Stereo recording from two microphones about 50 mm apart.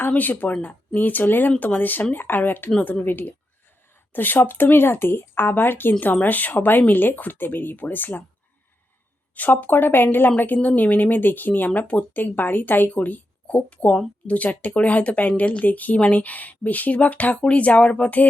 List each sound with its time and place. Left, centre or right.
0.2 s a woman's voice: left
9.3 s a woman's voice: left
13.7 s a woman's voice: left